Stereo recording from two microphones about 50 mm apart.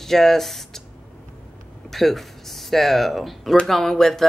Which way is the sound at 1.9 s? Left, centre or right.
Centre.